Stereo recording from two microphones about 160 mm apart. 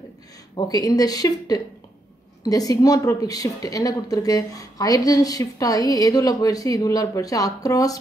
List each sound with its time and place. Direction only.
0.6 s a woman's voice: 25° left (ahead or behind)